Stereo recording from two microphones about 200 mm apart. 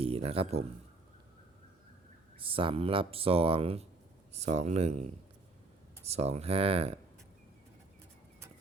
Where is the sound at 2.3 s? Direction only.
25° right (ahead or behind).